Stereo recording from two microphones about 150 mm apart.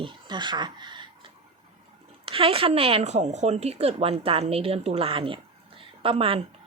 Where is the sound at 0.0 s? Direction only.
30° right (ahead or behind).